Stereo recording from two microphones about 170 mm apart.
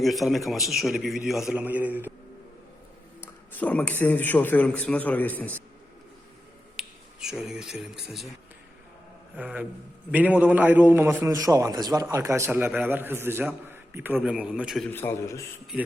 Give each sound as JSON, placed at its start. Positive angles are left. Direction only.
{"t": 0.0, "sound": "a man's voice", "side_deg": 0}
{"t": 3.5, "sound": "a man's voice", "side_deg": 10}
{"t": 6.7, "sound": "finger snapping", "side_deg": -5}
{"t": 7.4, "sound": "a man's voice", "side_deg": -5}
{"t": 9.3, "sound": "a man's voice", "side_deg": -10}
{"t": 14.8, "sound": "a man's voice", "side_deg": 15}